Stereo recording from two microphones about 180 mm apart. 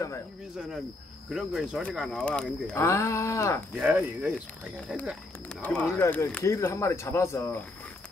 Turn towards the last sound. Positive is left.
turn(degrees=10)  # may be behind; listen again after turning